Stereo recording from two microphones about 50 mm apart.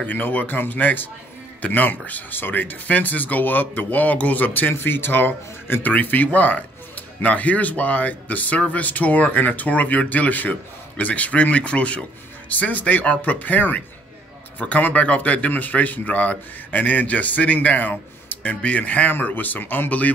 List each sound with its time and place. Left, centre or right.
0.0 s speech: left
4.7 s speech: left